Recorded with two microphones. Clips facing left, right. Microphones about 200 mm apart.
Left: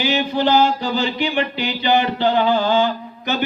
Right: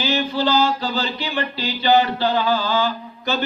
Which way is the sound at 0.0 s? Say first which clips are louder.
Left 2 dB; 15° left (ahead or behind).